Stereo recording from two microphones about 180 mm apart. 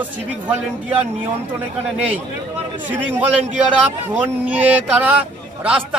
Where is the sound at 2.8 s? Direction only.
10° right (ahead or behind).